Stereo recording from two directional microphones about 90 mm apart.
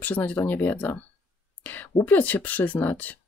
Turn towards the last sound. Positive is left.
turn(degrees=20)  # may be behind; listen again after turning